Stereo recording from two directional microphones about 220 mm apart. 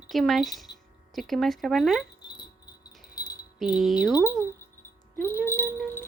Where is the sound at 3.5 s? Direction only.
Centre (ahead or behind).